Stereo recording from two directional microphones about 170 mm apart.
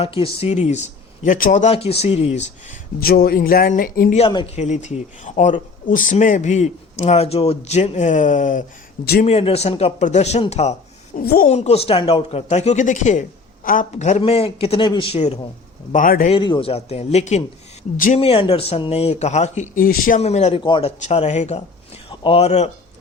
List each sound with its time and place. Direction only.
0.0 s speech: 35° left (ahead or behind)
3.0 s speech: 60° left (ahead or behind)
4.3 s speech: 25° left (ahead or behind)
4.5 s speech: 45° left (ahead or behind)
9.2 s speech: 35° left (ahead or behind)
14.2 s speech: 35° left (ahead or behind)
15.9 s speech: 55° left (ahead or behind)
16.3 s speech: 30° left (ahead or behind)
17.9 s speech: 55° left (ahead or behind)
18.2 s speech: 35° left (ahead or behind)
20.6 s speech: 30° left (ahead or behind)
21.0 s speech: 40° left (ahead or behind)
22.1 s speech: 30° left (ahead or behind)